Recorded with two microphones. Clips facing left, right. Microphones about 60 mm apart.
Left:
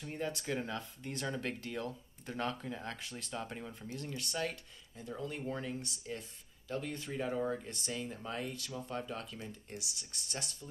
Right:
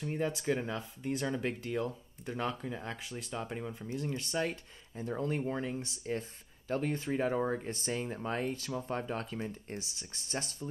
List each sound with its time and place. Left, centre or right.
0.0 s speech: centre
5.0 s speech: right
5.4 s speech: right
6.7 s speech: right